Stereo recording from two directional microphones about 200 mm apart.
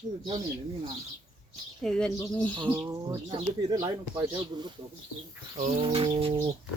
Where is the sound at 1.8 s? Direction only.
5° left (ahead or behind).